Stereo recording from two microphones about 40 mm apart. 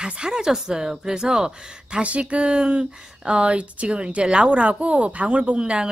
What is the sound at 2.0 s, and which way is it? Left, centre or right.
Speech, right.